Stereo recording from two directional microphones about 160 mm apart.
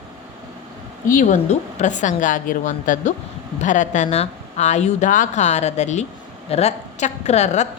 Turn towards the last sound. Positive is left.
turn(degrees=45)  # may be behind; listen again after turning